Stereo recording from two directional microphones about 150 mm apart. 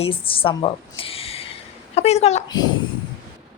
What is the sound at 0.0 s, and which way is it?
A woman's voice, 35° left (ahead or behind).